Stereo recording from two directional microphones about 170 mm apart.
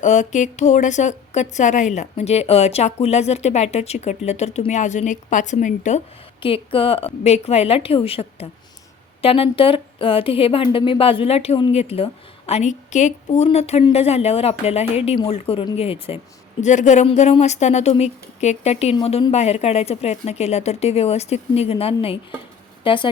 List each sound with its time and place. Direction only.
0.0 s a woman's voice: 45° left (ahead or behind)
6.4 s speech: 30° left (ahead or behind)